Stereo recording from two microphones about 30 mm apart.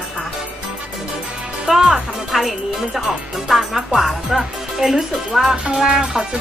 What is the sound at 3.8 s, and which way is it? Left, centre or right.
Speech, centre.